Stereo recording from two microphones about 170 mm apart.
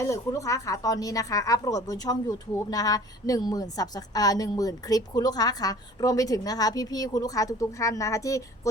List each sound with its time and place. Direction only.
0.0 s a woman's voice: 20° left (ahead or behind)